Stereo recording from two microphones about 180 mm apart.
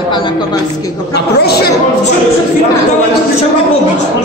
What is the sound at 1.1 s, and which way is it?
Speech, 65° left (ahead or behind).